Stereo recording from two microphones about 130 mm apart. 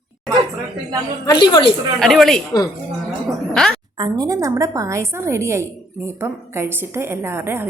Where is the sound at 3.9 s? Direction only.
30° right (ahead or behind).